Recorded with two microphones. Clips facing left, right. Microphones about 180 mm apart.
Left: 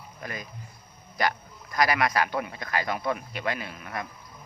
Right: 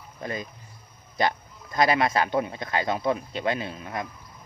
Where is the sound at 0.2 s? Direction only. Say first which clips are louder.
Right 5 dB; 25° right (ahead or behind).